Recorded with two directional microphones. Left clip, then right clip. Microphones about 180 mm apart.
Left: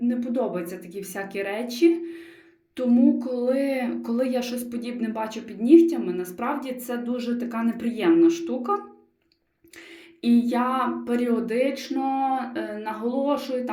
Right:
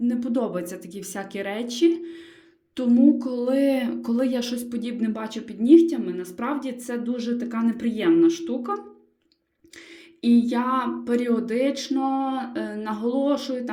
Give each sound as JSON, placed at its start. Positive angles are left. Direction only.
{"t": 0.2, "sound": "speech", "side_deg": -45}
{"t": 10.2, "sound": "music", "side_deg": -40}
{"t": 10.5, "sound": "speech", "side_deg": -40}